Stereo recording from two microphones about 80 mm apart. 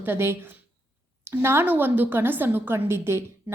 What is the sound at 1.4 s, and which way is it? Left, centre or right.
A woman's voice, right.